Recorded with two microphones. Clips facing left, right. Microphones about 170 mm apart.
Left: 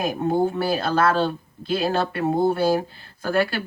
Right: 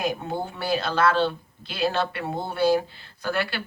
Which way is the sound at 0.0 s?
45° left (ahead or behind).